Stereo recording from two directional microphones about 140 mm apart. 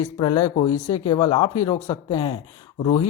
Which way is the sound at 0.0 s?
30° left (ahead or behind).